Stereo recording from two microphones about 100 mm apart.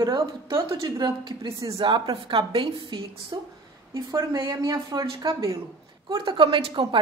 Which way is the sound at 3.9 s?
40° right (ahead or behind).